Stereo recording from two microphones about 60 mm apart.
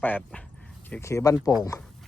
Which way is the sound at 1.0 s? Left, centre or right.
Left.